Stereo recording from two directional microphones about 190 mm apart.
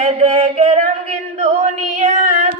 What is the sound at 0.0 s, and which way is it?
Singing, 35° right (ahead or behind).